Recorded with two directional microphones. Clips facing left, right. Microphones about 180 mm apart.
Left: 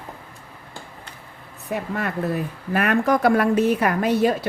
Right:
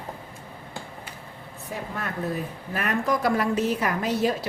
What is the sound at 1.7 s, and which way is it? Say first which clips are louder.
A woman's voice: left 7 dB; 70° left (ahead or behind).